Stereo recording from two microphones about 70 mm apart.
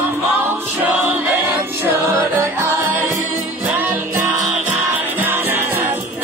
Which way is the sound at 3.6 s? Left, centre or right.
Right.